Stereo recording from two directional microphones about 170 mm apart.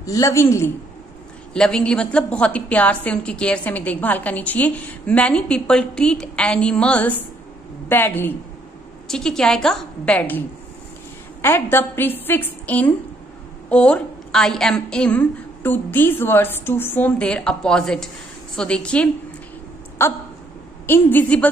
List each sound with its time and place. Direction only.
0.0 s a woman's voice: 20° left (ahead or behind)
1.5 s a woman's voice: 5° left (ahead or behind)
11.4 s a woman's voice: 15° left (ahead or behind)